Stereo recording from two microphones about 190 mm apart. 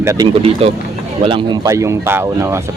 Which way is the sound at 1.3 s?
25° right (ahead or behind).